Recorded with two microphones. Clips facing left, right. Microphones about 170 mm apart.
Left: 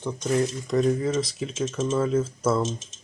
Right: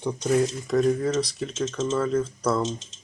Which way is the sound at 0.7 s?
Centre (ahead or behind).